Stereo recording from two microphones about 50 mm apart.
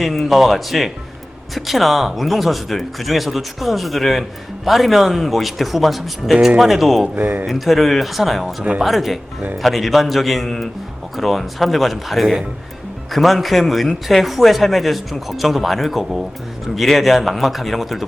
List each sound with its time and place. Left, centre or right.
0.0 s speech: centre
7.2 s speech: right
7.4 s speech: centre